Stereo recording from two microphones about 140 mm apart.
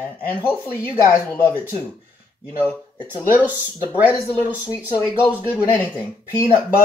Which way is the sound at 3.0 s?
15° right (ahead or behind).